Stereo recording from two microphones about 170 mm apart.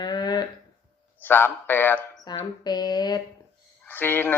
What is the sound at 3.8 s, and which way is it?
Speech, 10° left (ahead or behind).